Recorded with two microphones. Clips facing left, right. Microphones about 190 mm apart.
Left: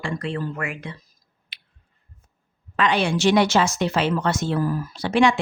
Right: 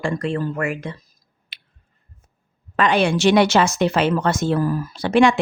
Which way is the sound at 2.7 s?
50° right (ahead or behind).